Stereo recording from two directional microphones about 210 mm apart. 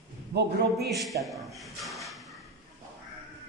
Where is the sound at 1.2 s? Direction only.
Centre (ahead or behind).